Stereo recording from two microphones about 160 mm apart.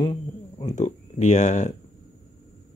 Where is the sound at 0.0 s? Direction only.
25° left (ahead or behind).